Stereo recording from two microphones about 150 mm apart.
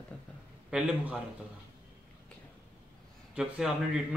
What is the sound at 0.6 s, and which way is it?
Speech, 5° right (ahead or behind).